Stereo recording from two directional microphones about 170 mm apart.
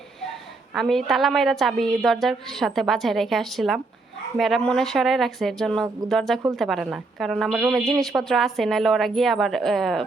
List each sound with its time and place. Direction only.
0.7 s a woman's voice: centre (ahead or behind)